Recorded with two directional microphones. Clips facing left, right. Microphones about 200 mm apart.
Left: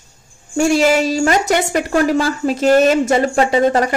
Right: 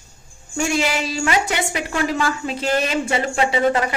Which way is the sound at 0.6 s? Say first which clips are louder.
Left 8 dB; 40° left (ahead or behind).